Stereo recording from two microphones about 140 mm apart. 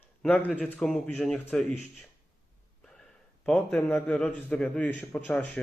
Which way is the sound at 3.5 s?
5° left (ahead or behind).